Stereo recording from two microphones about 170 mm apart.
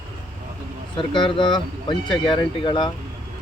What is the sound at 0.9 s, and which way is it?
Speech, 30° left (ahead or behind).